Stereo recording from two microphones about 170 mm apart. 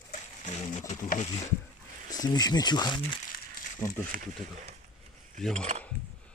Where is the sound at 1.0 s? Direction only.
50° left (ahead or behind).